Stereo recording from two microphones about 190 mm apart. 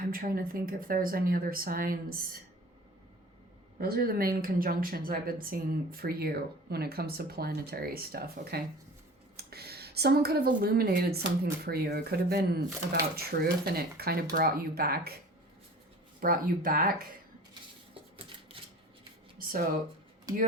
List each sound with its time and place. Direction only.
0.0 s speech: 50° right (ahead or behind)
3.8 s speech: 50° right (ahead or behind)
16.2 s speech: 50° right (ahead or behind)
19.4 s a sound: 50° right (ahead or behind)